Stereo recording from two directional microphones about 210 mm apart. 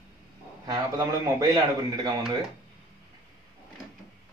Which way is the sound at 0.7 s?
15° right (ahead or behind).